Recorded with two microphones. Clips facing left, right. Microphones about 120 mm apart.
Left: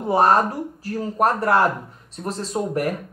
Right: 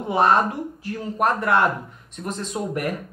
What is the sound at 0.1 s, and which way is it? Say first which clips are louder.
Speech: left 2 dB; 40° left (ahead or behind).